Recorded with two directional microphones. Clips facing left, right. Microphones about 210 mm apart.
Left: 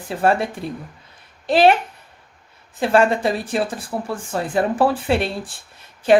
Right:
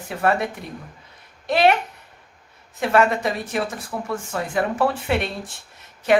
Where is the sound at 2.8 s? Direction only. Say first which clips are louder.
Left 2 dB; 30° left (ahead or behind).